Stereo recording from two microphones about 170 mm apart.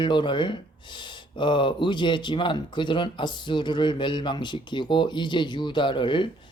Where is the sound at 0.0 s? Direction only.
30° left (ahead or behind).